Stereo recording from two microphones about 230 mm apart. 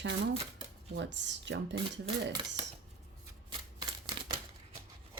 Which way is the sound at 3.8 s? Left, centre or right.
Centre.